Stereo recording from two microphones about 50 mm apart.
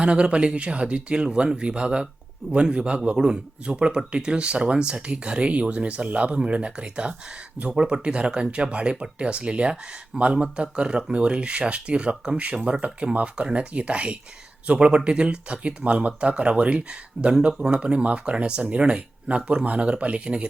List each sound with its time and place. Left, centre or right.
0.0 s speech: right